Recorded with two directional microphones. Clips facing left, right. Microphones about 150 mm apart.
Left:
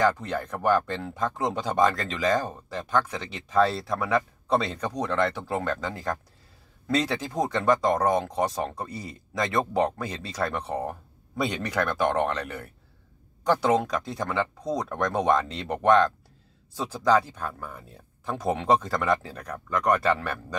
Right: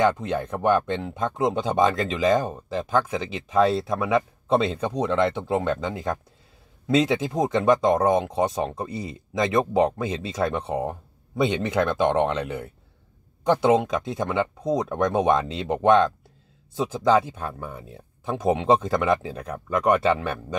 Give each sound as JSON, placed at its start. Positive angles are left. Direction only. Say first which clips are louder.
{"t": 0.2, "sound": "speech", "louder": "right 3 dB", "side_deg": -20}